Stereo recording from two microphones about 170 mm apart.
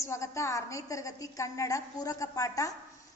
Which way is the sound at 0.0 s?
15° left (ahead or behind).